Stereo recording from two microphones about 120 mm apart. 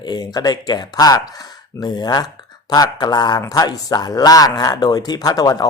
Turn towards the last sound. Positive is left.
turn(degrees=30)  # may be behind; listen again after turning